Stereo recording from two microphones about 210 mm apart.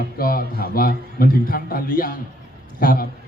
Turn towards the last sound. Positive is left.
turn(degrees=45)  # may be behind; listen again after turning